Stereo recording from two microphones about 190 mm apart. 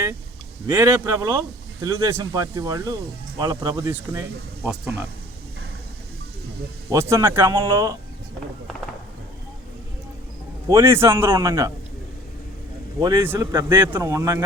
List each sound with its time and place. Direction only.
0.7 s speech: 10° right (ahead or behind)
6.9 s speech: 15° right (ahead or behind)
7.5 s speech: 25° right (ahead or behind)
10.7 s speech: 15° right (ahead or behind)
13.0 s speech: 15° right (ahead or behind)